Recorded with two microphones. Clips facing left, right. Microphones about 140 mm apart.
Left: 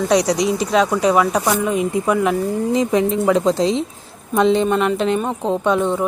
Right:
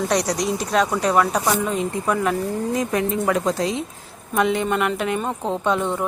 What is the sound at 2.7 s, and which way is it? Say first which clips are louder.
Speech: left 6 dB; 20° left (ahead or behind).